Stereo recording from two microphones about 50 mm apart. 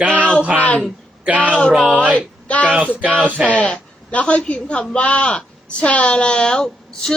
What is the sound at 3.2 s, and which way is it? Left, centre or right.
Speech, right.